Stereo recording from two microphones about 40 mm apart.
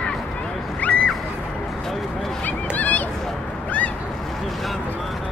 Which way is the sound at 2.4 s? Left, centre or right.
Left.